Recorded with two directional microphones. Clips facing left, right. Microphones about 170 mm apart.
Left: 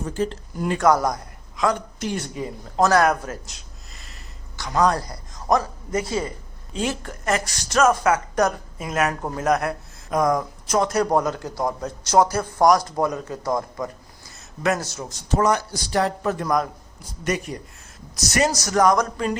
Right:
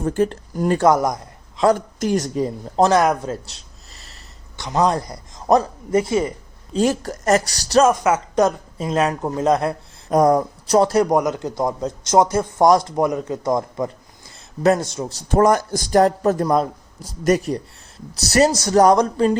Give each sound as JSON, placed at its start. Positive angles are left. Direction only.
{"t": 0.0, "sound": "speech", "side_deg": -55}
{"t": 0.8, "sound": "a man's voice", "side_deg": -20}
{"t": 1.6, "sound": "speech", "side_deg": -45}
{"t": 3.0, "sound": "a man's voice", "side_deg": -20}
{"t": 3.4, "sound": "a sound", "side_deg": -35}
{"t": 4.6, "sound": "a man's voice", "side_deg": -20}
{"t": 6.7, "sound": "speech", "side_deg": -40}
{"t": 11.0, "sound": "a man's voice", "side_deg": -15}
{"t": 15.3, "sound": "speech", "side_deg": -50}